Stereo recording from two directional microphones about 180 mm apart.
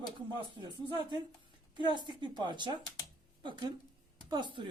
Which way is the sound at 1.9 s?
25° right (ahead or behind).